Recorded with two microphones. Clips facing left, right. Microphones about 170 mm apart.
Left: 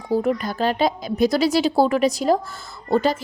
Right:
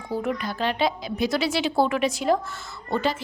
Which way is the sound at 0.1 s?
35° left (ahead or behind).